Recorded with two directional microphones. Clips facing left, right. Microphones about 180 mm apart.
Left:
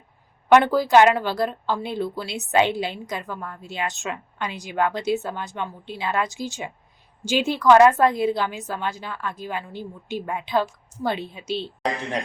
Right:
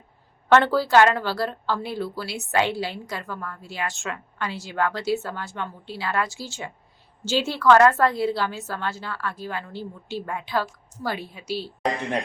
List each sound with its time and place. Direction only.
0.4 s a woman's voice: 15° left (ahead or behind)